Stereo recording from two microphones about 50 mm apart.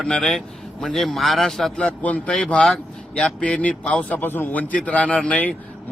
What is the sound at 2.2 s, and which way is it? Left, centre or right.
A man's voice, centre.